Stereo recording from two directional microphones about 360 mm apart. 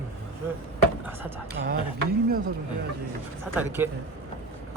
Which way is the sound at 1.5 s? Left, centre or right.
Right.